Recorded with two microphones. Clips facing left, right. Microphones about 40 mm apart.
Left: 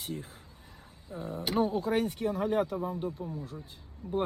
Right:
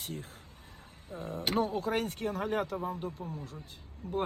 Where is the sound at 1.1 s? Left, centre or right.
Right.